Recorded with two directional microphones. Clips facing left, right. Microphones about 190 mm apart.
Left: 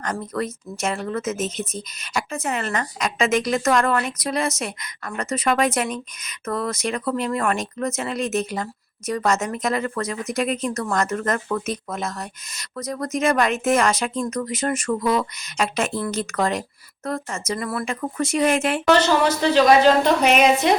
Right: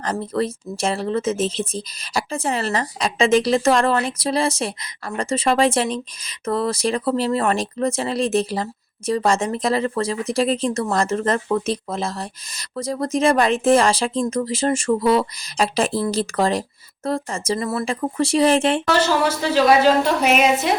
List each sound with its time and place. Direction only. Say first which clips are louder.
0.0 s speech: right 4 dB; 30° right (ahead or behind)
19.0 s a woman's voice: left 1 dB; 5° right (ahead or behind)